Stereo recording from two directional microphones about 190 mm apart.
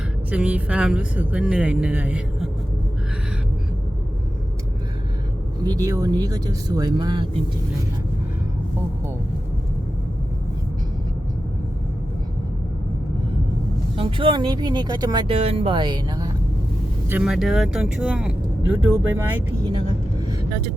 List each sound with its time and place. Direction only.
0.3 s speech: 5° right (ahead or behind)
5.6 s speech: 20° right (ahead or behind)
13.9 s speech: 25° right (ahead or behind)
17.1 s speech: 5° right (ahead or behind)